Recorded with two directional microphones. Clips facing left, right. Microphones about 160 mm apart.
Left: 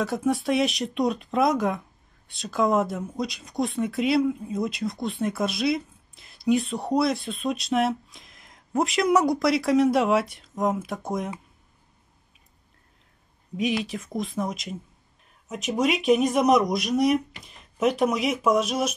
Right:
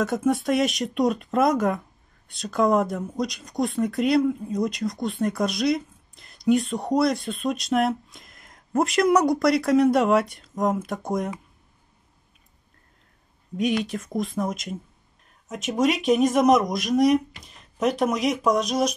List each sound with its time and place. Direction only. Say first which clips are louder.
0.0 s speech: right 2 dB; centre (ahead or behind)
13.6 s speech: right 2 dB; centre (ahead or behind)